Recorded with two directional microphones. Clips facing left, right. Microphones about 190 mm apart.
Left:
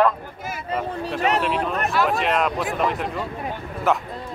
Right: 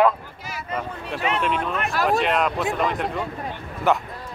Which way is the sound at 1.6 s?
40° left (ahead or behind).